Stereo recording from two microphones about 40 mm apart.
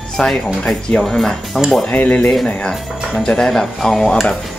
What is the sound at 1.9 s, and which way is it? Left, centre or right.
Speech, left.